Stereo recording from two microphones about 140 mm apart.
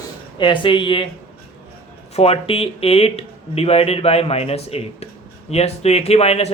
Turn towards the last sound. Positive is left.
turn(degrees=45)  # may be behind; listen again after turning